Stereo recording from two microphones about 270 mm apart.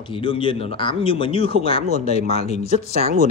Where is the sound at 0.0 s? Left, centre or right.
Centre.